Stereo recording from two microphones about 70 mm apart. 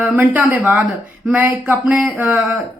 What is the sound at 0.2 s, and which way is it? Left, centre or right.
A woman's voice, centre.